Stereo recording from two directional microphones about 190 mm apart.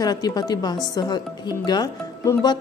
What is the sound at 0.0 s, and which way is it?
A woman's voice, 20° left (ahead or behind).